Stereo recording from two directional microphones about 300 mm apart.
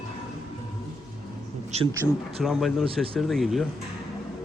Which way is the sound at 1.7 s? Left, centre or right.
Right.